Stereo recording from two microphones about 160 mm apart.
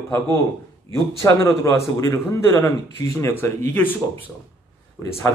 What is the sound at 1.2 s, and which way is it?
A man's voice, 20° left (ahead or behind).